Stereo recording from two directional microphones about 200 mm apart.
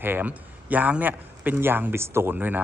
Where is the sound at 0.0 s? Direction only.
10° right (ahead or behind).